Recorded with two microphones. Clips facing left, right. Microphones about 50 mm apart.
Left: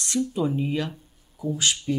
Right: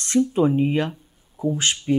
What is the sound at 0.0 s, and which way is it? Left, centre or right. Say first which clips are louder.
Speech: right 6 dB; right.